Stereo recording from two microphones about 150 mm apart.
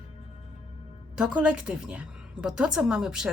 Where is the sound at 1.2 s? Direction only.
5° right (ahead or behind).